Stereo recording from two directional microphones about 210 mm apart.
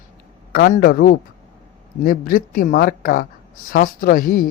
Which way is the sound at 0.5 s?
40° left (ahead or behind).